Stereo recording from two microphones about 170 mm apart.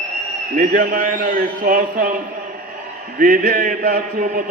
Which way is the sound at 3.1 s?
55° right (ahead or behind).